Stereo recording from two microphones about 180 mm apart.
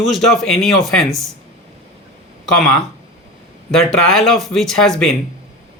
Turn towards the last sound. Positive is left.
turn(degrees=0)  # may be behind; listen again after turning